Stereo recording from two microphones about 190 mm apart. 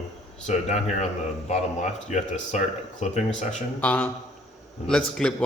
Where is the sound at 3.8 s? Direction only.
10° left (ahead or behind).